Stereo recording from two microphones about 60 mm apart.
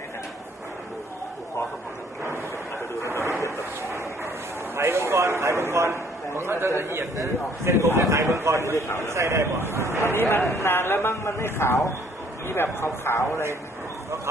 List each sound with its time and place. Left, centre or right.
4.8 s a man's voice: right
8.7 s speech: left
9.0 s a man's voice: right
10.3 s speech: left